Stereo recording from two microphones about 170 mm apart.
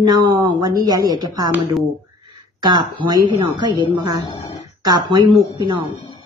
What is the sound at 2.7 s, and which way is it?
A woman's voice, 25° right (ahead or behind).